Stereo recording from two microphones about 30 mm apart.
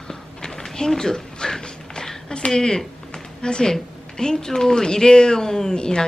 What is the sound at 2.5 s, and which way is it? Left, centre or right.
Speech, centre.